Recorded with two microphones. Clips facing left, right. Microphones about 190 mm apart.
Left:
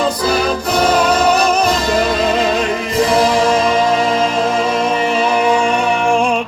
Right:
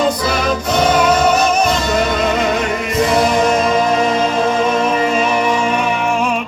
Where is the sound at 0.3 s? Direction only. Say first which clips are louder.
Left 1 dB; 35° left (ahead or behind).